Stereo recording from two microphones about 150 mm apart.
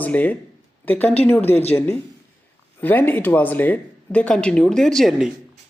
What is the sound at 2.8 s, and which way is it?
Speech, 15° left (ahead or behind).